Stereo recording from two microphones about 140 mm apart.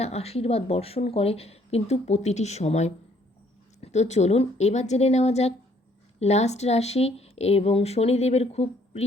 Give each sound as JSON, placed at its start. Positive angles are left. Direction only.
{"t": 0.0, "sound": "speech", "side_deg": 50}